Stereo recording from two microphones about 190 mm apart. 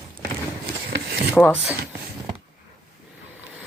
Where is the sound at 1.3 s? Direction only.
10° left (ahead or behind).